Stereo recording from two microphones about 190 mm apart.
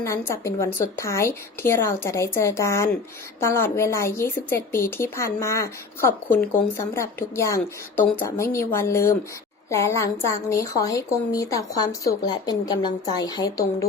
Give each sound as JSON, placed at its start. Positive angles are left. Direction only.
{"t": 0.3, "sound": "a woman's voice", "side_deg": 15}